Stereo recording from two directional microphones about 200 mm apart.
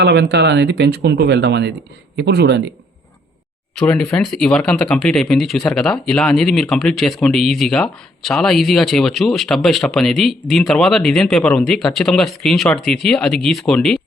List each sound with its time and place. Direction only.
0.0 s speech: 60° right (ahead or behind)
3.8 s speech: 5° left (ahead or behind)